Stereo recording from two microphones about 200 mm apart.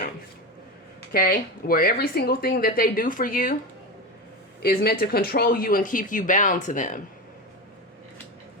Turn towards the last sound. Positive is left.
turn(degrees=40)  # may be behind; listen again after turning